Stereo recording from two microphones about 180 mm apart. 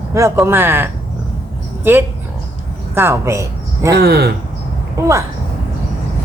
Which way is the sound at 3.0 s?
15° right (ahead or behind).